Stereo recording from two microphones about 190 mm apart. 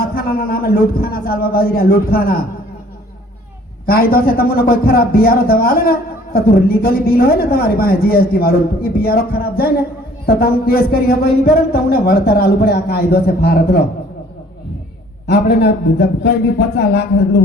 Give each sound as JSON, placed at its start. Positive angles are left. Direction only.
{"t": 0.0, "sound": "a man's voice", "side_deg": 50}
{"t": 3.8, "sound": "a man's voice", "side_deg": 55}
{"t": 15.3, "sound": "speech", "side_deg": 60}